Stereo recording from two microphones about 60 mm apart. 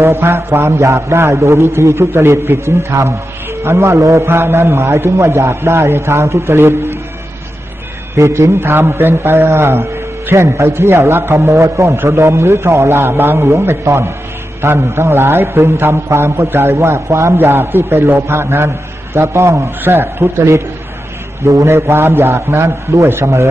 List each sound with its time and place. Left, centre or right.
0.0 s a man's voice: right
0.7 s a man's voice: right
4.3 s a man's voice: right
8.1 s a man's voice: right
12.0 s a man's voice: right
17.4 s a man's voice: right
19.8 s a man's voice: right
21.6 s a man's voice: right